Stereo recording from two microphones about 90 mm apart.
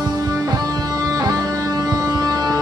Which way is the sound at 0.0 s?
45° right (ahead or behind).